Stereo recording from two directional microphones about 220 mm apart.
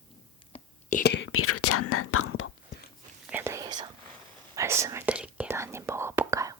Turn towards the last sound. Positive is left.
turn(degrees=-15)  # may be behind; listen again after turning